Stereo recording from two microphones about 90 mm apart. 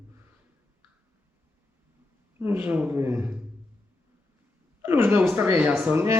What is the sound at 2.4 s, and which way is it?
Speech, 25° right (ahead or behind).